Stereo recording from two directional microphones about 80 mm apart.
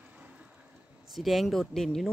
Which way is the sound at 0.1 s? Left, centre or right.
Centre.